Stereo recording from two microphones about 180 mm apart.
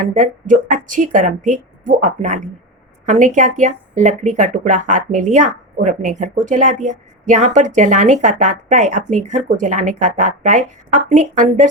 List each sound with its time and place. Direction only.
0.0 s speech: 45° right (ahead or behind)